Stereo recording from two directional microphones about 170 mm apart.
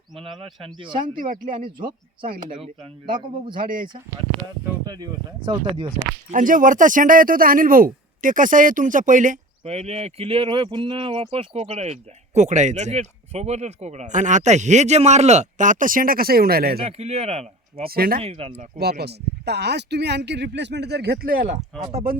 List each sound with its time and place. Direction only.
0.6 s speech: 30° right (ahead or behind)
1.1 s speech: 55° right (ahead or behind)
3.2 s speech: 30° right (ahead or behind)
3.6 s speech: 55° right (ahead or behind)
4.6 s speech: 20° right (ahead or behind)
6.3 s speech: 55° right (ahead or behind)
16.8 s speech: 40° right (ahead or behind)
17.8 s speech: 60° right (ahead or behind)
18.2 s speech: 35° right (ahead or behind)
18.8 s speech: 70° right (ahead or behind); by 22.0 s 40° right (ahead or behind)